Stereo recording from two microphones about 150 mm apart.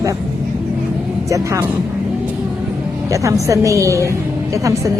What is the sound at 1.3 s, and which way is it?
Speech, 20° right (ahead or behind).